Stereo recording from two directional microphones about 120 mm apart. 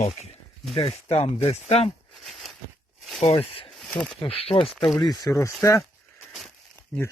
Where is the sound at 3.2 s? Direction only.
55° left (ahead or behind).